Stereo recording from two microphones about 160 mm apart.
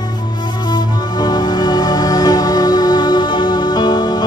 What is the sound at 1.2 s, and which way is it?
Music, 25° left (ahead or behind).